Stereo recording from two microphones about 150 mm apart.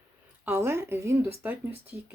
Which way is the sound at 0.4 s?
15° right (ahead or behind).